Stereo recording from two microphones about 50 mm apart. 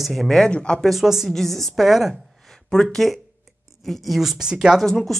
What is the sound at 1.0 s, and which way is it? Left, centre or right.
Speech, centre.